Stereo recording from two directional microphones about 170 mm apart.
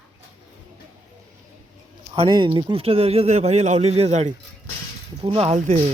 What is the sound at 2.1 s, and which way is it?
Speech, 30° right (ahead or behind).